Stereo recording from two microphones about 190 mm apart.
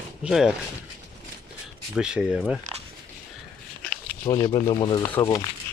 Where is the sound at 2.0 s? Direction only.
5° right (ahead or behind).